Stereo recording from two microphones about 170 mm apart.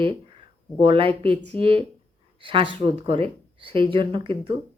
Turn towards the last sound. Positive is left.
turn(degrees=-30)  # may be behind; listen again after turning